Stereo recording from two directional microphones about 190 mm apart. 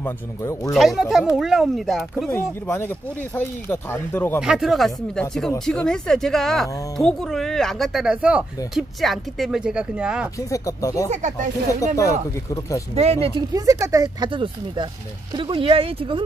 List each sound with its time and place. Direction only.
0.0 s speech: 15° left (ahead or behind)
0.7 s speech: centre (ahead or behind)
2.2 s speech: 15° left (ahead or behind)
4.4 s speech: 5° right (ahead or behind)
10.5 s speech: 15° left (ahead or behind)
11.1 s speech: 40° right (ahead or behind)
11.8 s speech: 15° left (ahead or behind)
12.9 s speech: 35° right (ahead or behind)
13.5 s speech: 15° right (ahead or behind)